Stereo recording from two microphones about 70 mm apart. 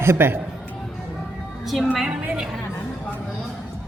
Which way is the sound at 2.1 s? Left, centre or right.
Right.